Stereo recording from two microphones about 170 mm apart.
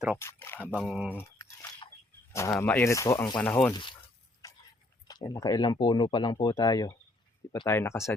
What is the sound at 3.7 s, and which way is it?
Speech, 30° left (ahead or behind).